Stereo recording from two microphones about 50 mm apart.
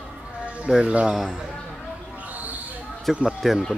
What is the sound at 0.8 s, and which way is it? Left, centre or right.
Speech, centre.